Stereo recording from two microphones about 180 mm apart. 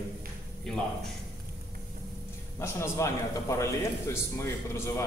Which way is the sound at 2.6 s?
15° left (ahead or behind).